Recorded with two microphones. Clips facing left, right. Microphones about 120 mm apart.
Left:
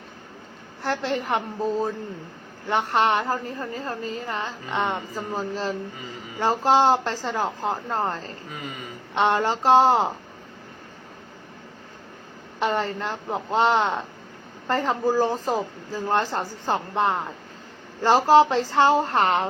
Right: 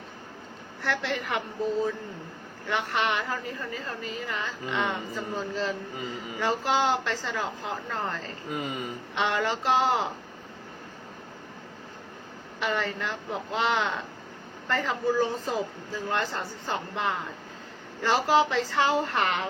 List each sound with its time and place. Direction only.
0.8 s a woman's voice: 40° left (ahead or behind)
12.5 s a woman's voice: 40° left (ahead or behind)